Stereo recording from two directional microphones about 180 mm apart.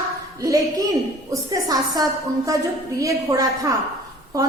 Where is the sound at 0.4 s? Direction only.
20° right (ahead or behind).